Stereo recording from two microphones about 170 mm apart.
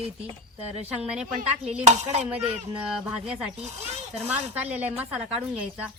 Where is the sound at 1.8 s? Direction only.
40° right (ahead or behind).